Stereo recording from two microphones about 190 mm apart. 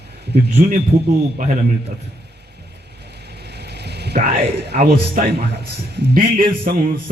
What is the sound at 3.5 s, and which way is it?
A man's voice, 60° right (ahead or behind).